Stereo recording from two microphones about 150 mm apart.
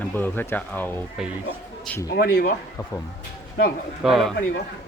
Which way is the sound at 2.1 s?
90° left.